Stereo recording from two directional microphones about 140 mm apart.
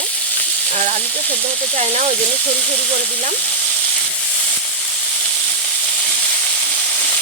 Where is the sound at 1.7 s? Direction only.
50° right (ahead or behind).